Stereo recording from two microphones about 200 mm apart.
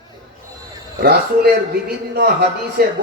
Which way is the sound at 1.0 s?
55° right (ahead or behind).